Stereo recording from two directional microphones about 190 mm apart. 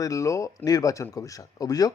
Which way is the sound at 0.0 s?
15° left (ahead or behind).